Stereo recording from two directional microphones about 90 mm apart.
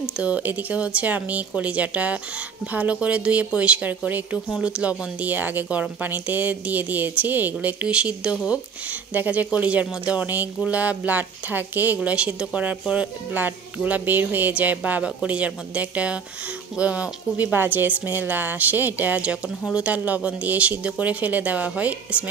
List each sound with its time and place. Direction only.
0.2 s a woman's voice: 15° right (ahead or behind)